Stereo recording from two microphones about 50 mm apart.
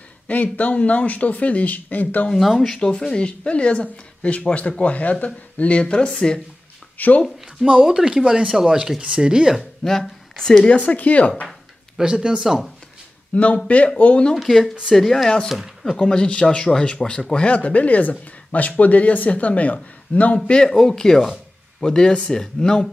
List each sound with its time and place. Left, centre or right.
0.3 s a man's voice: left
2.6 s speech: centre
7.0 s a man's voice: left
7.8 s speech: centre
9.8 s speech: centre
10.6 s speech: left
12.0 s speech: centre
12.4 s speech: centre
13.3 s speech: left
14.3 s speech: centre
16.0 s a man's voice: centre
20.4 s speech: centre